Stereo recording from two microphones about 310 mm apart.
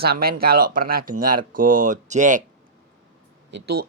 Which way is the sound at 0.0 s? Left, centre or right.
Right.